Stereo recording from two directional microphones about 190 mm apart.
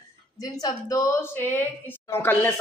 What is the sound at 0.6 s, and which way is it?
Speech, 20° left (ahead or behind).